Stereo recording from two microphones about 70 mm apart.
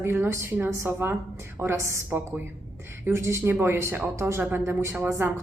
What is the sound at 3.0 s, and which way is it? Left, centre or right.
A woman's voice, right.